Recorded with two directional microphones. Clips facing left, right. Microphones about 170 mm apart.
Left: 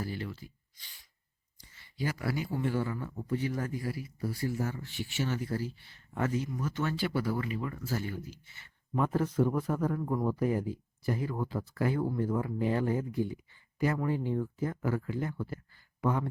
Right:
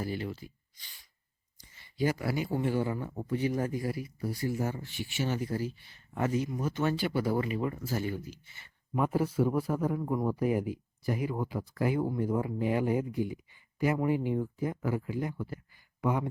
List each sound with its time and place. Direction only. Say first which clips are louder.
0.0 s speech: right 3 dB; 15° right (ahead or behind)
2.0 s speech: right 4 dB; 15° right (ahead or behind)